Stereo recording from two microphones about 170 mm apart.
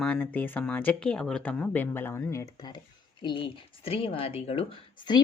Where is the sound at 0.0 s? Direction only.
10° left (ahead or behind).